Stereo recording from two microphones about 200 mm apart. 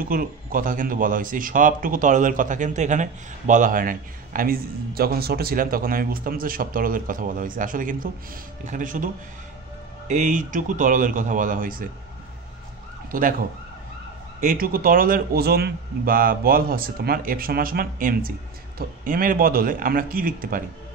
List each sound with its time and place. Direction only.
0.0 s speech: 45° right (ahead or behind)
13.1 s speech: 45° right (ahead or behind)
14.4 s speech: 45° right (ahead or behind)